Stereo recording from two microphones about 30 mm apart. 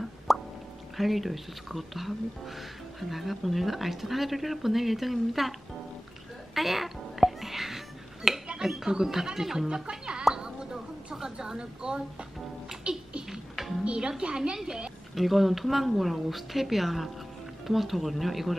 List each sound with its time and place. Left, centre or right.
0.3 s plop: centre
0.9 s speech: centre
6.5 s music: centre
8.6 s speech: centre
9.8 s speech: right
10.3 s a sound: right
11.1 s a woman's voice: right
12.9 s beatboxing: right
13.8 s a woman's voice: right
15.1 s speech: centre